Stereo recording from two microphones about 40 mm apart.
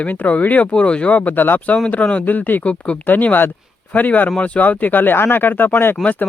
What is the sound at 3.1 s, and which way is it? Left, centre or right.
Speech, left.